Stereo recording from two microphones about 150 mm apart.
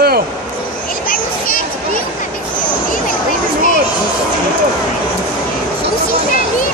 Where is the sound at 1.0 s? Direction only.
65° left (ahead or behind).